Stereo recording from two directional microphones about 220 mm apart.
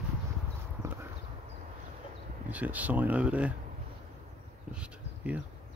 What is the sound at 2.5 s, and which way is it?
Speech, 5° right (ahead or behind).